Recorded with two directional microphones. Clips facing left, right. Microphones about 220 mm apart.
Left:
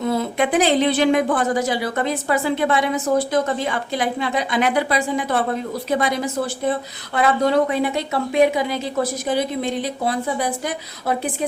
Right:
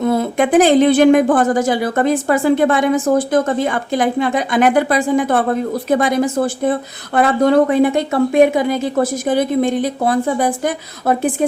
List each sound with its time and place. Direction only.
0.0 s a woman's voice: 50° right (ahead or behind)